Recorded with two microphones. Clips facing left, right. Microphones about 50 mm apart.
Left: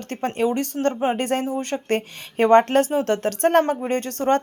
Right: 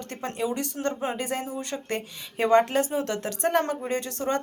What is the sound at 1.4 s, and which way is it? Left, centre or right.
Speech, left.